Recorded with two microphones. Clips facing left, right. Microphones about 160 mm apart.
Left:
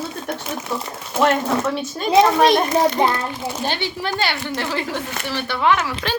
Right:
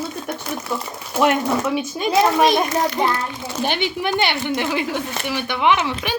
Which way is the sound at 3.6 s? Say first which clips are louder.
Right 5 dB; 15° right (ahead or behind).